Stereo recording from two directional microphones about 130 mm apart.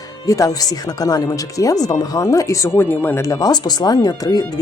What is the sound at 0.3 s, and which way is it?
Speech, 25° left (ahead or behind).